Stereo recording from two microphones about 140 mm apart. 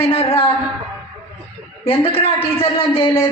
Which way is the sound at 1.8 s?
40° left (ahead or behind).